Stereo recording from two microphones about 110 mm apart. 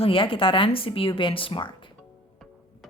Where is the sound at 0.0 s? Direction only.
55° left (ahead or behind).